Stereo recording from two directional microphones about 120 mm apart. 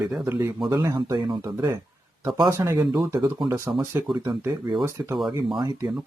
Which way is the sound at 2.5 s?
25° right (ahead or behind).